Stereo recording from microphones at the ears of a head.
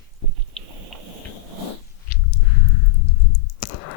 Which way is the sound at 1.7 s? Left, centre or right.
Left.